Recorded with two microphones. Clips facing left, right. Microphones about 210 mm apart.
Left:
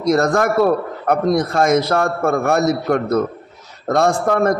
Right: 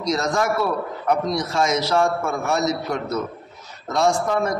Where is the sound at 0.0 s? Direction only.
55° left (ahead or behind).